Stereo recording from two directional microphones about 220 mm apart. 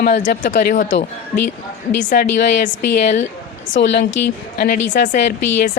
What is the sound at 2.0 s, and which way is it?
Speech, 45° left (ahead or behind).